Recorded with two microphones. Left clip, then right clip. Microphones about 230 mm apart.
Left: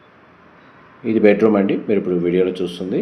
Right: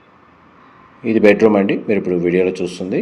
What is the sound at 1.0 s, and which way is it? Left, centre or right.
Speech, right.